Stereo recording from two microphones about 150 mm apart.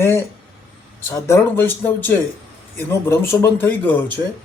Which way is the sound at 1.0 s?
15° left (ahead or behind).